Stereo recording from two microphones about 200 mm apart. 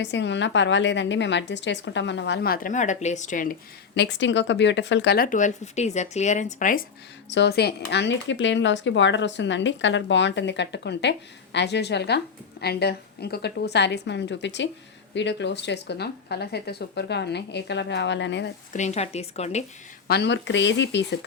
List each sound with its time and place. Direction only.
0.0 s a woman's voice: 60° left (ahead or behind); by 6.8 s 40° left (ahead or behind)
7.3 s a woman's voice: 60° left (ahead or behind)
18.7 s speech: 35° left (ahead or behind)
20.1 s a woman's voice: 60° left (ahead or behind)